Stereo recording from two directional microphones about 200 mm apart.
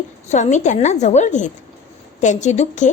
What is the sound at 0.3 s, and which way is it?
A woman's voice, 35° left (ahead or behind).